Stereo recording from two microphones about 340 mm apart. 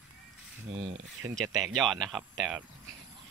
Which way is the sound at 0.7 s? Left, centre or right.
Centre.